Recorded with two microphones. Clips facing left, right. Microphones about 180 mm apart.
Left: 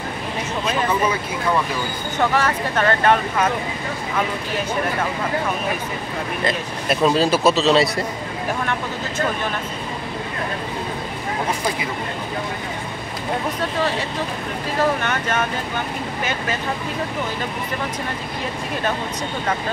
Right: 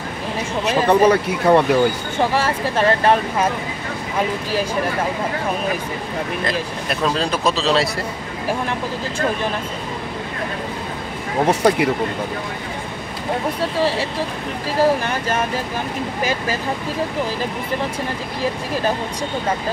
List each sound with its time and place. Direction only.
0.8 s speech: 65° right (ahead or behind)
2.1 s speech: 30° right (ahead or behind)
6.4 s speech: 5° left (ahead or behind)
11.4 s speech: 70° right (ahead or behind)
13.7 s speech: 30° right (ahead or behind)